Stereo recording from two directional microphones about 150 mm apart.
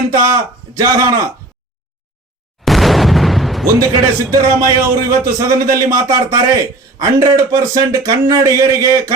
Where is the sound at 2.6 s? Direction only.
Centre (ahead or behind).